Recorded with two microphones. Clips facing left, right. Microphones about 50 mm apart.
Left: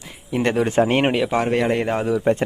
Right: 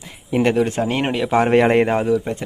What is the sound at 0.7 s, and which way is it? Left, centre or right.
Speech, left.